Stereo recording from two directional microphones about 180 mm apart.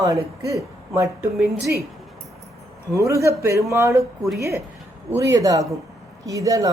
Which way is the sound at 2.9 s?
15° right (ahead or behind).